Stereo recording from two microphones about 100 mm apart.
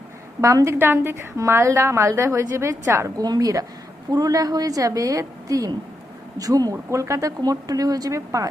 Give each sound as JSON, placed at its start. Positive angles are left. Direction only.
{"t": 0.4, "sound": "a woman's voice", "side_deg": -30}
{"t": 3.2, "sound": "speech", "side_deg": -40}